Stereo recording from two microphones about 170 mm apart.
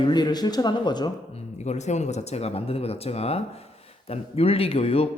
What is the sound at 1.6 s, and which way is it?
A man's voice, 40° left (ahead or behind).